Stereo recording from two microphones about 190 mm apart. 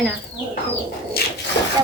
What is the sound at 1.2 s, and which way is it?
Speech, 55° left (ahead or behind).